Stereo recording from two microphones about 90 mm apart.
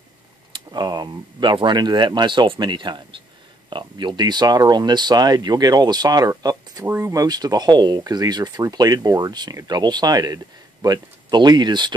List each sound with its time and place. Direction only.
0.5 s speech: 55° right (ahead or behind)